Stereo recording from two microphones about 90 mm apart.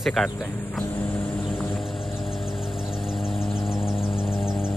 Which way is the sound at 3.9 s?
90° left.